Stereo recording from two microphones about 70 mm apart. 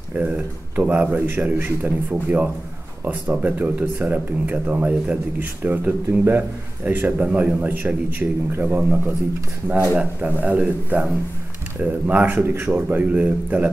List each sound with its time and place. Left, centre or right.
0.7 s a man's voice: right
10.4 s a man's voice: right